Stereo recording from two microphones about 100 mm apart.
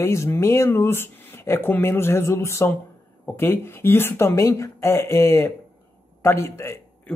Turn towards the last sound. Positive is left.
turn(degrees=30)  # may be behind; listen again after turning